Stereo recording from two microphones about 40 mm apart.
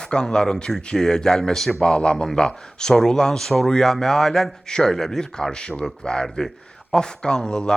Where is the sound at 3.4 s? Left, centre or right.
Centre.